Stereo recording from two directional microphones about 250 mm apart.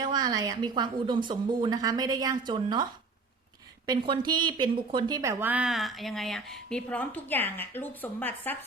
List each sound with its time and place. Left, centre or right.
0.0 s a woman's voice: centre
3.8 s speech: centre